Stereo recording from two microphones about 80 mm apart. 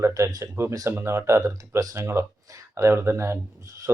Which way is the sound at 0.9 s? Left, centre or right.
Right.